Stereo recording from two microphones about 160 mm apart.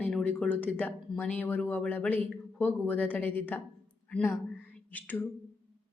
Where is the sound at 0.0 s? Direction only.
5° left (ahead or behind).